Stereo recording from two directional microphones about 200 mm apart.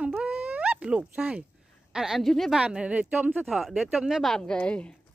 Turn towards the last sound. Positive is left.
turn(degrees=5)  # may be behind; listen again after turning